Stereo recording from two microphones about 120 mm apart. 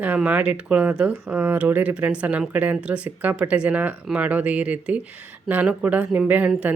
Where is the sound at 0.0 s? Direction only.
15° right (ahead or behind).